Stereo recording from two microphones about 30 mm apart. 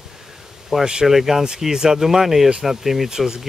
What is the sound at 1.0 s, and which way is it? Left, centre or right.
Speech, centre.